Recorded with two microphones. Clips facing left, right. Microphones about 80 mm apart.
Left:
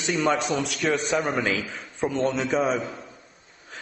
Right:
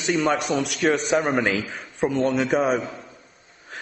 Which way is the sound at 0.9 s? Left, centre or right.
Centre.